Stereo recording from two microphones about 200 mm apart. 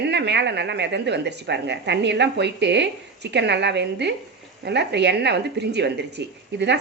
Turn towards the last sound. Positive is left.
turn(degrees=-60)  # may be behind; listen again after turning